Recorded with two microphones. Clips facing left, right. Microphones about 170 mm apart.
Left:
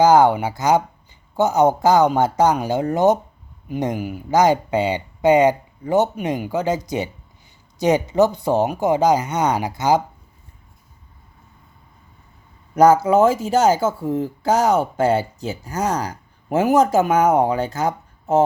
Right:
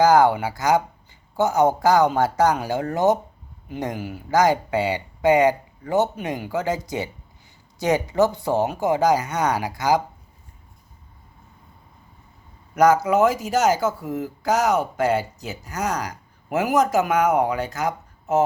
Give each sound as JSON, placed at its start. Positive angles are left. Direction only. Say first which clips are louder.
{"t": 0.0, "sound": "speech", "louder": "left 2 dB", "side_deg": 20}
{"t": 12.7, "sound": "speech", "louder": "left 4 dB", "side_deg": 30}